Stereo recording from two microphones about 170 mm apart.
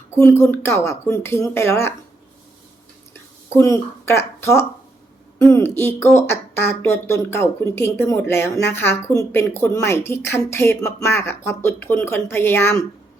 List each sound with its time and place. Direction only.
0.1 s speech: 15° left (ahead or behind)
3.5 s speech: 15° left (ahead or behind)